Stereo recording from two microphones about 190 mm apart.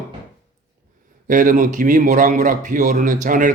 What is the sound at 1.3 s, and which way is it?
A man's voice, 45° right (ahead or behind).